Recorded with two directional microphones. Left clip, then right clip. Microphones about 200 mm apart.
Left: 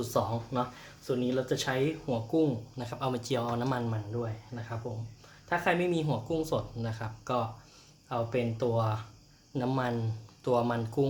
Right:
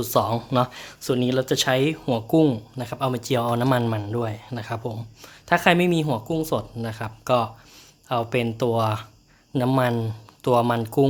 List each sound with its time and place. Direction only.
0.0 s speech: 45° right (ahead or behind)